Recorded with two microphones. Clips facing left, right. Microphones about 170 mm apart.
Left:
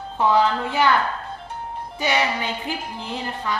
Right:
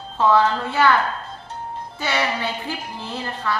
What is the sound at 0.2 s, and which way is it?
Speech, 15° left (ahead or behind).